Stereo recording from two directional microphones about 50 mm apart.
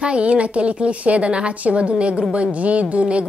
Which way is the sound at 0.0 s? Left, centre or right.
Right.